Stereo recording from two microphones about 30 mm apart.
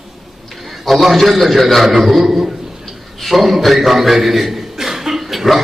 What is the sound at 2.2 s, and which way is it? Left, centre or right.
Speech, centre.